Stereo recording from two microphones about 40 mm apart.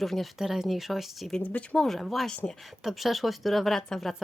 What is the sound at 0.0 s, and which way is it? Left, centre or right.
Speech, centre.